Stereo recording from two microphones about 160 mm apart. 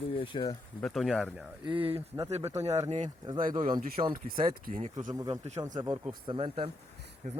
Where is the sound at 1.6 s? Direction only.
30° right (ahead or behind).